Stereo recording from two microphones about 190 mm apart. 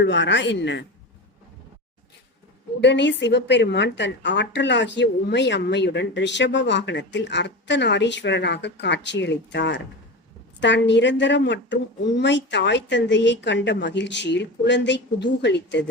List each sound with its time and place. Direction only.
0.0 s a woman's voice: 70° left (ahead or behind)
2.8 s a woman's voice: 65° left (ahead or behind)